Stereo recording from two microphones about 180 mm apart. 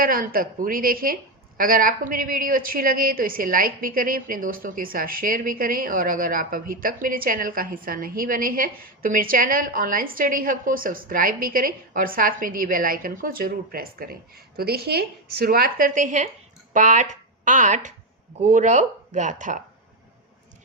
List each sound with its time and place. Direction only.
0.0 s a woman's voice: 50° right (ahead or behind)